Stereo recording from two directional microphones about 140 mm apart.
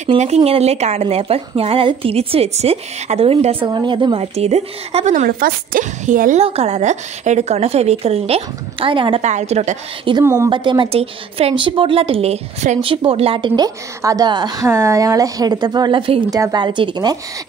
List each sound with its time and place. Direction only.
0.2 s a woman's voice: 50° right (ahead or behind)
4.2 s a woman's voice: 50° right (ahead or behind); by 6.4 s 65° right (ahead or behind)
6.4 s a woman's voice: 45° right (ahead or behind)
9.2 s a woman's voice: 55° right (ahead or behind)
10.2 s a woman's voice: 20° right (ahead or behind)
10.5 s a woman's voice: 35° right (ahead or behind)
13.6 s a woman's voice: 25° right (ahead or behind)
16.3 s a woman's voice: 25° right (ahead or behind)